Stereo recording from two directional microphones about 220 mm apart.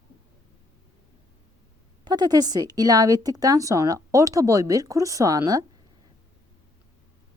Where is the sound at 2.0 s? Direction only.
20° right (ahead or behind).